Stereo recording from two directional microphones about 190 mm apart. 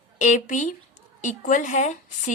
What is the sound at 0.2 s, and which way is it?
A woman's voice, 40° left (ahead or behind).